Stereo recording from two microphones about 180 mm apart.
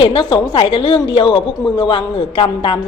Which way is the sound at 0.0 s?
25° left (ahead or behind).